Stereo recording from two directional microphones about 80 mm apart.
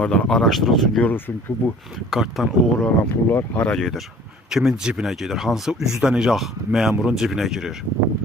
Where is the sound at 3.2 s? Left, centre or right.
Left.